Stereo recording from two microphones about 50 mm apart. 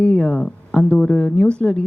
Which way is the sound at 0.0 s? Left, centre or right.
Left.